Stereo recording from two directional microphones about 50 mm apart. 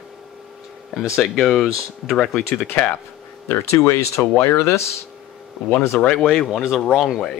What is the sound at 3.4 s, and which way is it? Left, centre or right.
Speech, left.